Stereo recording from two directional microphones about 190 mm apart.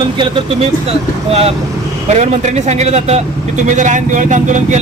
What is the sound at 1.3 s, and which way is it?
Speech, 30° right (ahead or behind).